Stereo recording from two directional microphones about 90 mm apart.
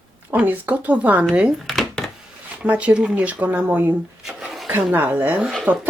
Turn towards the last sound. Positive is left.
turn(degrees=-20)  # may be behind; listen again after turning